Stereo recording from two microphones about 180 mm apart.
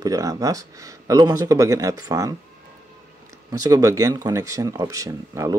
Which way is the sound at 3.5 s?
20° right (ahead or behind).